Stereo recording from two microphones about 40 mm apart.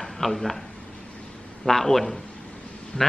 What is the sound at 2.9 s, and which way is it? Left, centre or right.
Speech, left.